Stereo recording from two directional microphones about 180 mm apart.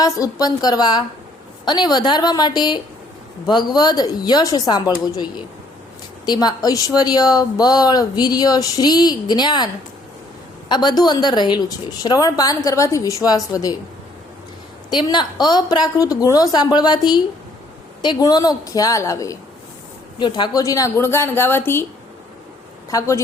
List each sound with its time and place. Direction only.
0.0 s a woman's voice: 20° left (ahead or behind)
10.7 s a woman's voice: 25° left (ahead or behind)
14.8 s a woman's voice: 25° left (ahead or behind)
22.9 s a woman's voice: 15° left (ahead or behind)